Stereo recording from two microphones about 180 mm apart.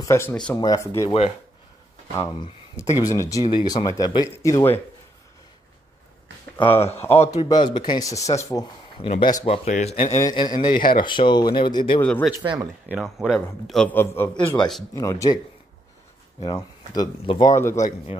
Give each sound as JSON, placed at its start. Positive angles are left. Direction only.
{"t": 0.0, "sound": "speech", "side_deg": 15}
{"t": 2.1, "sound": "speech", "side_deg": 15}
{"t": 7.0, "sound": "speech", "side_deg": 10}
{"t": 7.4, "sound": "speech", "side_deg": 25}
{"t": 8.9, "sound": "speech", "side_deg": 30}
{"t": 9.7, "sound": "speech", "side_deg": 40}
{"t": 10.3, "sound": "speech", "side_deg": 25}
{"t": 12.0, "sound": "speech", "side_deg": 5}
{"t": 12.4, "sound": "speech", "side_deg": -20}
{"t": 12.9, "sound": "a man's voice", "side_deg": 0}
{"t": 16.3, "sound": "speech", "side_deg": 25}
{"t": 17.7, "sound": "speech", "side_deg": 40}